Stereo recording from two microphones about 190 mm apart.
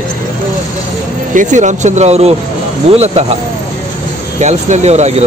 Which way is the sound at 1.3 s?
40° right (ahead or behind).